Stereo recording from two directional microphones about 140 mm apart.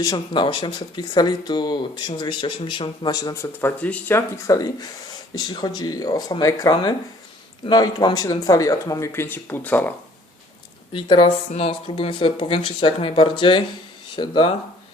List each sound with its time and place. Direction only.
0.0 s speech: 30° left (ahead or behind); by 4.2 s 10° left (ahead or behind)
4.4 s speech: 25° left (ahead or behind)
10.9 s speech: 35° left (ahead or behind)